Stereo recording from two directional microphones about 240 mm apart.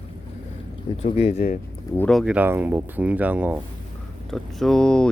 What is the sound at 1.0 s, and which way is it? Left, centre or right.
Speech, left.